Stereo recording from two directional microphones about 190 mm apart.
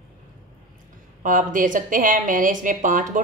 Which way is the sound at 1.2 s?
45° right (ahead or behind).